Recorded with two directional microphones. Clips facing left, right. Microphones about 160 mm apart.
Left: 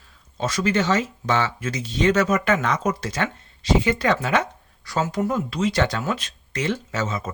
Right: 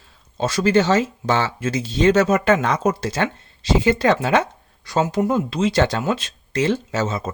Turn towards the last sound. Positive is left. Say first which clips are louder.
# right 4 dB
turn(degrees=-30)  # may be behind; listen again after turning